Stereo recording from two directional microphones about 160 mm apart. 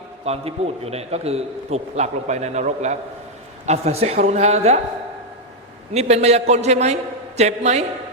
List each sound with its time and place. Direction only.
0.3 s a man's voice: 40° right (ahead or behind)
5.9 s a man's voice: 45° right (ahead or behind)